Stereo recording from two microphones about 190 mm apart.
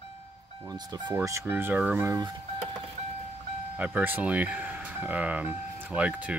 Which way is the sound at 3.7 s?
5° right (ahead or behind).